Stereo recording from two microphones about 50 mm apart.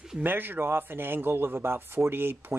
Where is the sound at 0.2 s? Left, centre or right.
Right.